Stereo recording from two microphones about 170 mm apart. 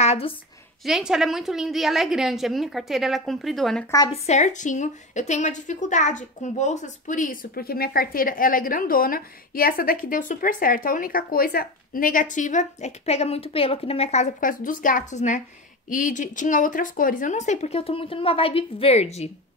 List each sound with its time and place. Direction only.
0.0 s a sound: 40° left (ahead or behind)
0.8 s a woman's voice: 5° right (ahead or behind)
4.1 s speech: 45° left (ahead or behind)